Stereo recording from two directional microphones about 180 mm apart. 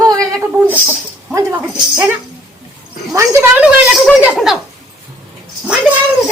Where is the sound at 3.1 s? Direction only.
15° right (ahead or behind).